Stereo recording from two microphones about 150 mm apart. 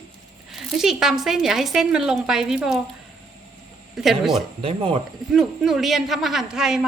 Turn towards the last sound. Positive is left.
turn(degrees=-5)  # may be behind; listen again after turning